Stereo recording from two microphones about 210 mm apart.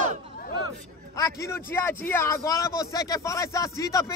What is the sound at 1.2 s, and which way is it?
A man's voice, 15° left (ahead or behind).